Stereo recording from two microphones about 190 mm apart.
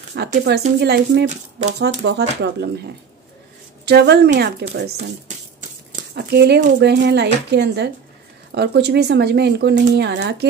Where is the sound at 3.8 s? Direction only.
60° right (ahead or behind).